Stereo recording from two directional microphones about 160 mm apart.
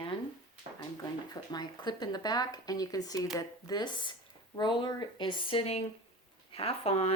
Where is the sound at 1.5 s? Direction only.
25° left (ahead or behind).